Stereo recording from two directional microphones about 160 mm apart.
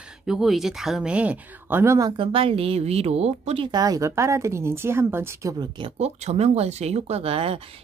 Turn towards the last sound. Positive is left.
turn(degrees=-35)  # may be behind; listen again after turning